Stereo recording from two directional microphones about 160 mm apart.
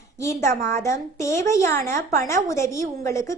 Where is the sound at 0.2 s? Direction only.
20° left (ahead or behind).